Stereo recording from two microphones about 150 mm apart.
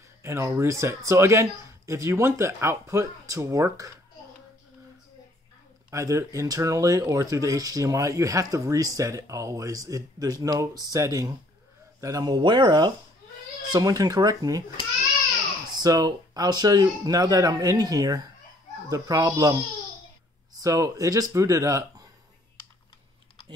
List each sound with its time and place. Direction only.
0.2 s speech: 20° right (ahead or behind)
5.9 s speech: 20° right (ahead or behind)
15.7 s speech: 25° right (ahead or behind)
20.6 s speech: 20° right (ahead or behind)